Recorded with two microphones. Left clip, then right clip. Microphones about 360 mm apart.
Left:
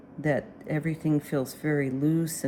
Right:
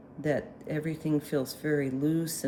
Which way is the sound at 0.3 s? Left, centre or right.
Centre.